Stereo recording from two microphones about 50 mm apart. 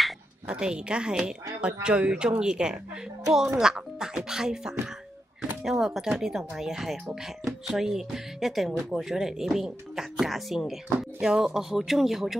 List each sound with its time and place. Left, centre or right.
0.5 s speech: centre
11.0 s speech: centre